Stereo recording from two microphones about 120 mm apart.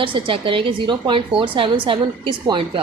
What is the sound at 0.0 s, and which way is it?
A woman's voice, 45° right (ahead or behind).